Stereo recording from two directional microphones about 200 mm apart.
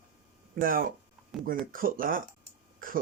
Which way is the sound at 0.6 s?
45° right (ahead or behind).